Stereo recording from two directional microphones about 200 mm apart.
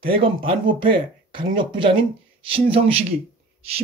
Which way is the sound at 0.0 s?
25° right (ahead or behind).